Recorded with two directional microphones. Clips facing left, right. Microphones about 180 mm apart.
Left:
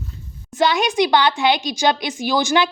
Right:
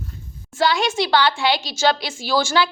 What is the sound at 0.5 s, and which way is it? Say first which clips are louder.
A woman's voice: left 2 dB; 20° left (ahead or behind).